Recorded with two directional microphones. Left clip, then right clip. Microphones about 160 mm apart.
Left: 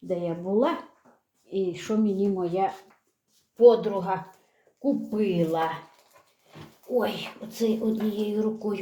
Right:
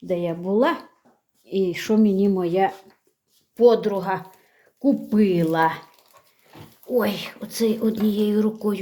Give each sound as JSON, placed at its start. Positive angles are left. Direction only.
{"t": 0.1, "sound": "speech", "side_deg": -30}
{"t": 3.6, "sound": "speech", "side_deg": -55}
{"t": 7.0, "sound": "speech", "side_deg": -45}